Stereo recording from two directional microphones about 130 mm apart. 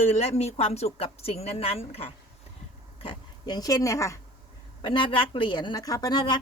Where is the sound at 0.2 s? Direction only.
55° left (ahead or behind).